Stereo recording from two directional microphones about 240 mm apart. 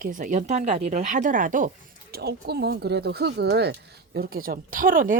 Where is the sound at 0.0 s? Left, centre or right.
Right.